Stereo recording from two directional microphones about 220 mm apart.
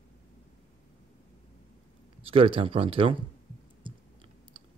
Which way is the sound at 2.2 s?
25° right (ahead or behind).